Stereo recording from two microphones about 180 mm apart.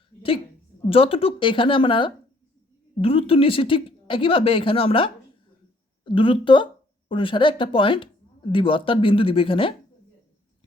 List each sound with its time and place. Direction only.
0.9 s a woman's voice: 30° left (ahead or behind)